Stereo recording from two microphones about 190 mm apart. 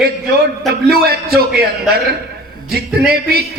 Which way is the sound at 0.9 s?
55° right (ahead or behind).